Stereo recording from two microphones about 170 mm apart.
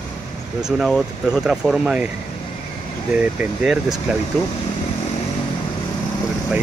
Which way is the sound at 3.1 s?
5° right (ahead or behind).